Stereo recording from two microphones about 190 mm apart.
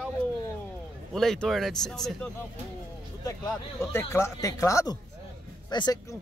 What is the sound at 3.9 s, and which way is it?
Speech, 15° left (ahead or behind).